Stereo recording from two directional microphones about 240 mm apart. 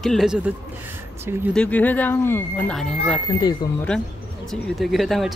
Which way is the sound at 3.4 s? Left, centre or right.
Centre.